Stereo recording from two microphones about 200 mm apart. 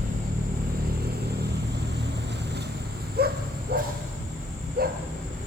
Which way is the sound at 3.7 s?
50° right (ahead or behind).